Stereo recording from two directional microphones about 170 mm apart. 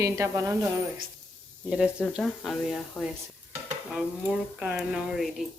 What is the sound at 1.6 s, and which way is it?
Speech, 5° right (ahead or behind).